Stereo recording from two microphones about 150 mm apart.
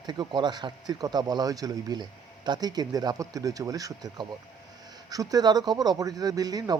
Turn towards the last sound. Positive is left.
turn(degrees=-25)  # may be behind; listen again after turning